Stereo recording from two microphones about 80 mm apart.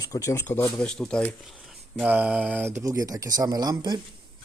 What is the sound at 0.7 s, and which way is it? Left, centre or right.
Speech, centre.